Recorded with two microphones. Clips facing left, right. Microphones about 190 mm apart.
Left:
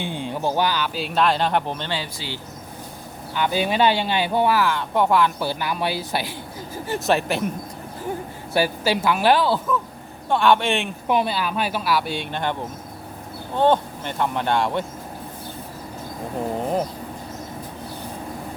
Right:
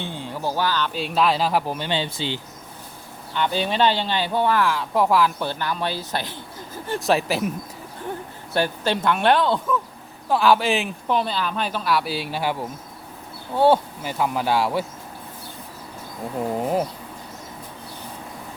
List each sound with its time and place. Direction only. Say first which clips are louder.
0.0 s speech: left 3 dB; 15° left (ahead or behind)
0.9 s speech: even; centre (ahead or behind)
1.9 s speech: right 4 dB; 25° right (ahead or behind)
3.3 s speech: left 1 dB; 10° left (ahead or behind)
5.5 s speech: left 1 dB; 10° left (ahead or behind)
8.5 s speech: left 2 dB; 5° left (ahead or behind)
11.1 s speech: left 2 dB; 10° left (ahead or behind); by 12.5 s 5° right (ahead or behind)
13.6 s speech: right 1 dB; 5° right (ahead or behind)